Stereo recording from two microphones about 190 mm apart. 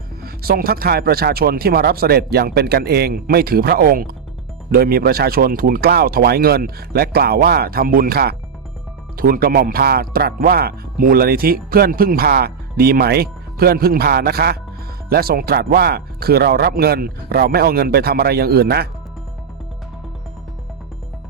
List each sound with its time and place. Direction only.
0.2 s speech: 55° right (ahead or behind)